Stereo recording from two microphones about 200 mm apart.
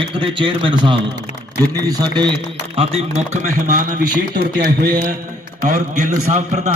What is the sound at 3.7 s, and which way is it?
A man's voice, 45° right (ahead or behind).